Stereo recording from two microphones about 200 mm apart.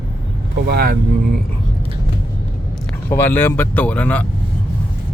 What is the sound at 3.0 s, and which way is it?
Speech, 10° left (ahead or behind).